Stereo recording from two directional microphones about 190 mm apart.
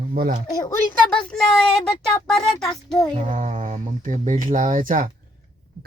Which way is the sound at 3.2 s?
40° right (ahead or behind).